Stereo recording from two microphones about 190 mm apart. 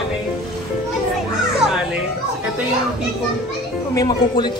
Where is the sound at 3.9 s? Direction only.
20° left (ahead or behind).